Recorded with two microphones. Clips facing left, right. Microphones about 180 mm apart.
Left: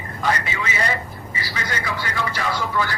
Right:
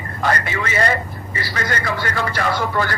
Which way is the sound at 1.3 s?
55° right (ahead or behind).